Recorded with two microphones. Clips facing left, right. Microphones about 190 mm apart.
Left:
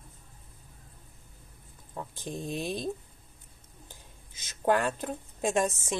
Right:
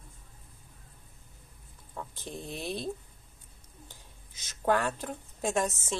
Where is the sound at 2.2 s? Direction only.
15° left (ahead or behind).